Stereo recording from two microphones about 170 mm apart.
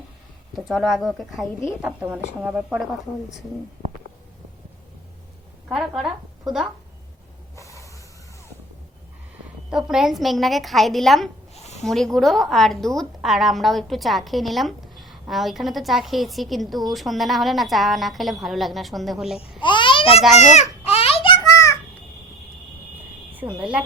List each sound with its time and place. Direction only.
0.5 s a woman's voice: centre (ahead or behind)
5.6 s a woman's voice: 5° right (ahead or behind)
7.5 s hiss: 20° left (ahead or behind)
9.6 s a woman's voice: 5° right (ahead or behind)
11.5 s a sound: 40° left (ahead or behind)
11.9 s a woman's voice: centre (ahead or behind)
19.6 s babbling: 30° left (ahead or behind)
20.3 s a sound: 40° left (ahead or behind)
23.4 s a woman's voice: 20° right (ahead or behind)